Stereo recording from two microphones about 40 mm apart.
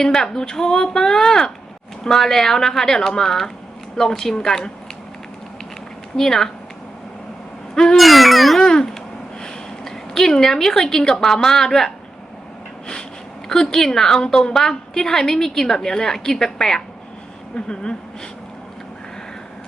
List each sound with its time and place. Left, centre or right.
0.0 s a woman's voice: centre
6.1 s a woman's voice: centre
7.9 s speech: centre
8.6 s babbling: centre
9.4 s a woman's voice: centre
13.5 s a woman's voice: centre
17.5 s speech: left